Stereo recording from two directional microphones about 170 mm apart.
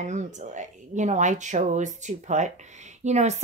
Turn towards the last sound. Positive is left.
turn(degrees=-40)  # may be behind; listen again after turning